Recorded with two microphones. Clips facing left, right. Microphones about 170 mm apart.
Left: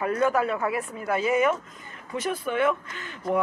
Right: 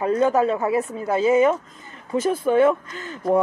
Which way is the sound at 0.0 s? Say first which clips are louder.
Right 5 dB; 25° right (ahead or behind).